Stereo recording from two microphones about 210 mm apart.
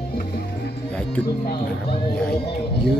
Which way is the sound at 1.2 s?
45° left (ahead or behind).